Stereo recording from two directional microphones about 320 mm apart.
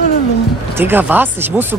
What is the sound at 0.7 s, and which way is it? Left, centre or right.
Speech, centre.